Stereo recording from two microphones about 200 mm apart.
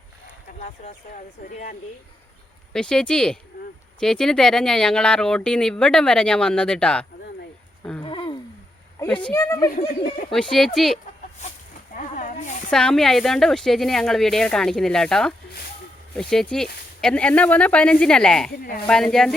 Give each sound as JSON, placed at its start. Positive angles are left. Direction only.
{"t": 1.5, "sound": "speech", "side_deg": 40}
{"t": 2.7, "sound": "speech", "side_deg": 5}
{"t": 8.0, "sound": "a sound", "side_deg": 25}
{"t": 9.2, "sound": "speech", "side_deg": 15}
{"t": 10.3, "sound": "speech", "side_deg": 5}
{"t": 11.9, "sound": "snake", "side_deg": 40}
{"t": 12.7, "sound": "speech", "side_deg": 5}